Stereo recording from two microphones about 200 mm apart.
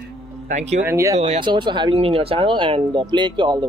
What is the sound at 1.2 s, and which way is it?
Speech, 35° right (ahead or behind).